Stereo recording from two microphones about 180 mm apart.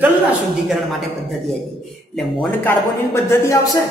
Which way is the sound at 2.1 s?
10° left (ahead or behind).